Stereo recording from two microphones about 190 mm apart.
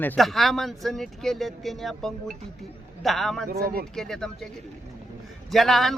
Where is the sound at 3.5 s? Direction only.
50° right (ahead or behind).